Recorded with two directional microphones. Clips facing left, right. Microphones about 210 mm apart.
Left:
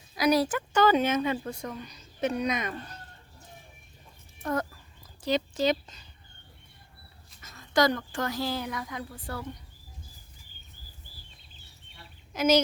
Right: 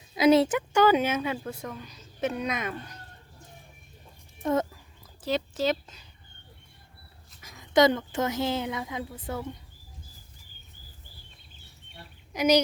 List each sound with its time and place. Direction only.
0.2 s speech: 25° right (ahead or behind)
0.8 s speech: 10° right (ahead or behind)
4.4 s speech: 20° right (ahead or behind)
5.2 s speech: 5° right (ahead or behind)
7.4 s a woman's voice: 15° right (ahead or behind)
12.3 s speech: 15° right (ahead or behind)